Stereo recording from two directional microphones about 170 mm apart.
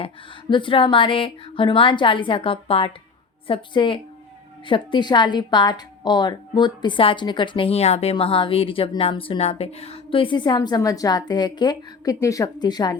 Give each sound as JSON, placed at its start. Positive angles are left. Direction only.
{"t": 0.5, "sound": "a woman's voice", "side_deg": 30}